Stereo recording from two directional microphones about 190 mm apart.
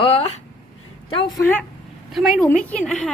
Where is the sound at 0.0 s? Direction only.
30° left (ahead or behind).